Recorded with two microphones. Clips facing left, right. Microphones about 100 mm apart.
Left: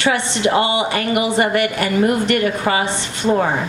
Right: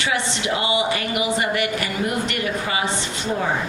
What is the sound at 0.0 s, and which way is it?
A woman's voice, 50° left (ahead or behind).